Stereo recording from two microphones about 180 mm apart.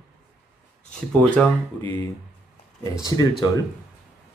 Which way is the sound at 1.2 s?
5° left (ahead or behind).